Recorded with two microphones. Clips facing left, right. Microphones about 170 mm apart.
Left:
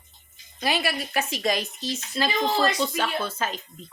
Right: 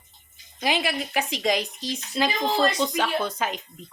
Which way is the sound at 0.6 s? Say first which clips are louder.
Right 1 dB; 15° right (ahead or behind).